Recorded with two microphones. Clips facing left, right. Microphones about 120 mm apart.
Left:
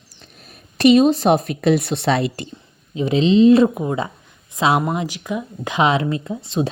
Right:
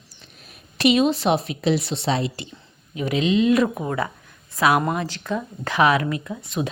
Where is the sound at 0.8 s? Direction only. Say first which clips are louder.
Left 6 dB; 40° left (ahead or behind).